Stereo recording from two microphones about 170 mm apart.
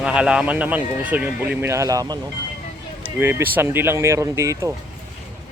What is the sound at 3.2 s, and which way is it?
Speech, 15° right (ahead or behind).